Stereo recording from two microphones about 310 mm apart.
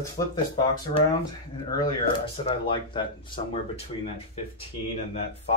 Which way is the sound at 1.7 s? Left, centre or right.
Centre.